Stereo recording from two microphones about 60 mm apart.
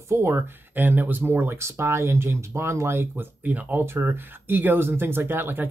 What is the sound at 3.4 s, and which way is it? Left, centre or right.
Speech, right.